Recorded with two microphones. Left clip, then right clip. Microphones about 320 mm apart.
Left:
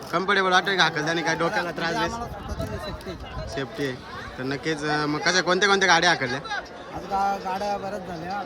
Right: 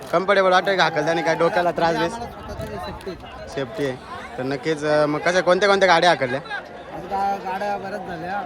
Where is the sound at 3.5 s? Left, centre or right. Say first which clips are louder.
Right 4 dB; centre.